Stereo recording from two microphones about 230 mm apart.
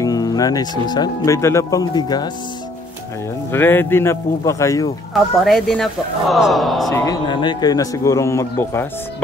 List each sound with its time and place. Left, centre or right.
0.0 s speech: centre
3.5 s speech: centre
5.1 s speech: centre
6.9 s speech: centre